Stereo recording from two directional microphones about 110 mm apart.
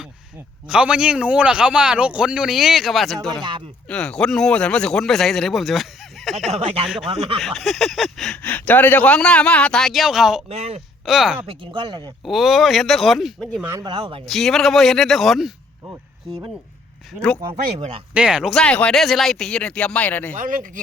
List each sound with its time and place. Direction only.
0.7 s a man's voice: 10° right (ahead or behind)
6.5 s speech: 60° right (ahead or behind)
6.8 s a man's voice: 5° right (ahead or behind)
8.4 s a man's voice: 15° left (ahead or behind); by 10.4 s 5° right (ahead or behind)
10.5 s speech: 75° right (ahead or behind)
11.0 s speech: centre (ahead or behind)
11.4 s speech: 45° right (ahead or behind)
12.2 s a man's voice: centre (ahead or behind)
13.9 s speech: 50° right (ahead or behind)
14.3 s a man's voice: centre (ahead or behind)
18.1 s a man's voice: 10° right (ahead or behind)
18.5 s a man's voice: 10° left (ahead or behind)